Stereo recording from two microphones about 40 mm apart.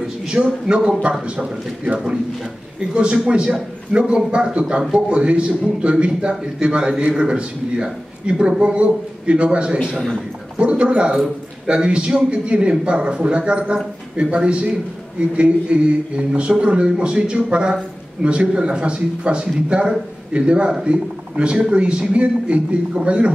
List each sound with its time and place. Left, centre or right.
0.3 s a man's voice: right
4.0 s a man's voice: centre
4.3 s speech: right
9.8 s a man's voice: centre
10.6 s speech: right